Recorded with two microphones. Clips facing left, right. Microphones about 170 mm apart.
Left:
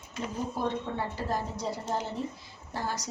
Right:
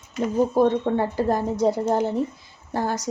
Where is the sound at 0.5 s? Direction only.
50° right (ahead or behind).